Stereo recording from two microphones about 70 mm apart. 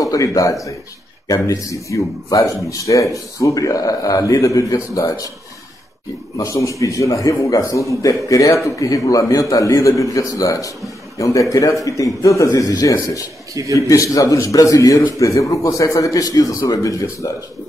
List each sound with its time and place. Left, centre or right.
0.0 s a man's voice: left
6.3 s a man's voice: left
13.6 s a man's voice: right
13.8 s a man's voice: left